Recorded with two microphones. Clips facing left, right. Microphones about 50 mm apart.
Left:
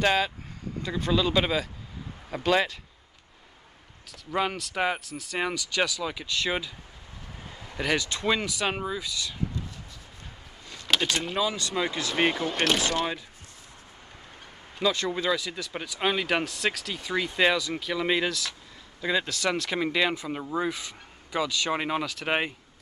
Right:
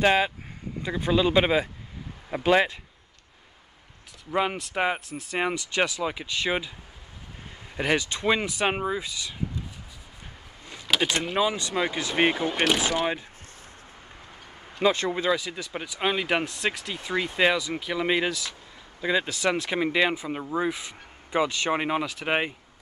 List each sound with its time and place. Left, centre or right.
0.0 s speech: right
4.3 s speech: centre
5.0 s speech: right
7.7 s speech: right
11.0 s speech: centre
14.8 s speech: right
15.0 s speech: centre
16.0 s speech: centre; by 21.7 s right
21.7 s speech: centre